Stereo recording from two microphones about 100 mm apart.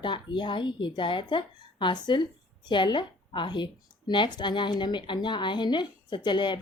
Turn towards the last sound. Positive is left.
turn(degrees=50)  # may be behind; listen again after turning